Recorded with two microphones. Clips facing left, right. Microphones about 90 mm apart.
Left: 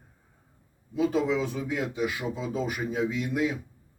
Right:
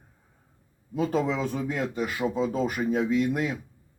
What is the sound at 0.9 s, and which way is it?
A man's voice, 40° right (ahead or behind).